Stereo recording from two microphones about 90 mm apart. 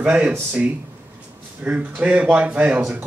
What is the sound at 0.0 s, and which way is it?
Speech, 15° right (ahead or behind).